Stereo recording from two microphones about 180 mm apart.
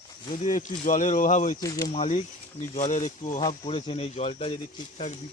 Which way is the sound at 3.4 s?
30° left (ahead or behind).